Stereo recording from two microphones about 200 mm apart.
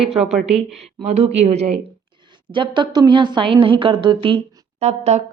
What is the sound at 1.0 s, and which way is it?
A woman's voice, 30° right (ahead or behind).